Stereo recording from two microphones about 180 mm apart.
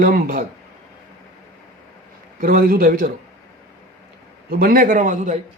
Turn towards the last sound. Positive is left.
turn(degrees=-45)  # may be behind; listen again after turning